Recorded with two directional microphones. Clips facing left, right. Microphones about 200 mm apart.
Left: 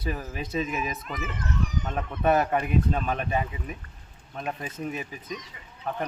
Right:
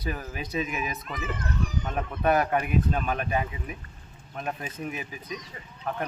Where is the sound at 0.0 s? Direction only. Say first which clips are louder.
Left 1 dB; centre (ahead or behind).